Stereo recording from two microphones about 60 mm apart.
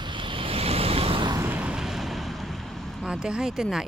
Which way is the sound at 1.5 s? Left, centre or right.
Right.